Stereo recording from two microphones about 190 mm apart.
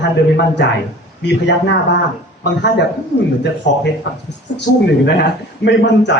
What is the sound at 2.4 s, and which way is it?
Speech, 60° left (ahead or behind).